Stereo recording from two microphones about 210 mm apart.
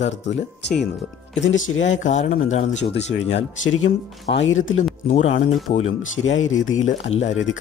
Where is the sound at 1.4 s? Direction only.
60° left (ahead or behind).